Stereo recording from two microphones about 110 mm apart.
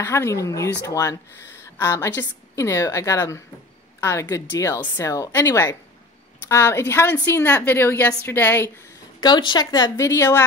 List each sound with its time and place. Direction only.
0.0 s a woman's voice: 25° left (ahead or behind)
9.2 s a woman's voice: 40° left (ahead or behind); by 10.4 s 25° left (ahead or behind)